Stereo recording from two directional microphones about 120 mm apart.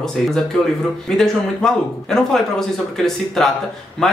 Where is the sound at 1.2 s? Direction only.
5° left (ahead or behind).